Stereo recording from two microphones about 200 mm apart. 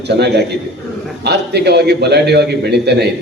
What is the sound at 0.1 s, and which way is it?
A man's voice, 55° right (ahead or behind).